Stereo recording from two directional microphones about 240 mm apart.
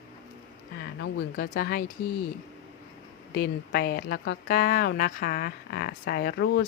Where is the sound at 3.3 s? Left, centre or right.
Left.